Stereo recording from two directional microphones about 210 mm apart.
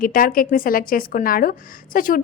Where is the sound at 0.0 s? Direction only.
40° left (ahead or behind).